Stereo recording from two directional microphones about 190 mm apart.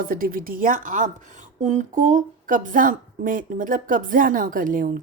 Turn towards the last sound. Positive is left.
turn(degrees=-45)  # may be behind; listen again after turning